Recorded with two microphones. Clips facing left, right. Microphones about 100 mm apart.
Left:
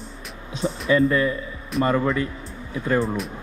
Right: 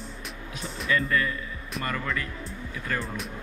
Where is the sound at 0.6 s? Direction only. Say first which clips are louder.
Left 9 dB; 30° left (ahead or behind).